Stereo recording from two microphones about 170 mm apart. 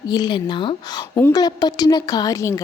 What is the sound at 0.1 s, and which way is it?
Speech, 25° left (ahead or behind).